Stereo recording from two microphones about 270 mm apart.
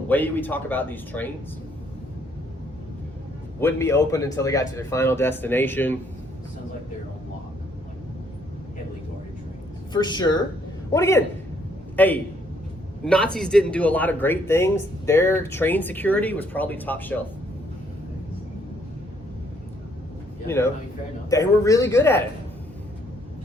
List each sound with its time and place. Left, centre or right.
0.1 s speech: centre
3.6 s speech: centre
9.9 s speech: centre
21.2 s speech: centre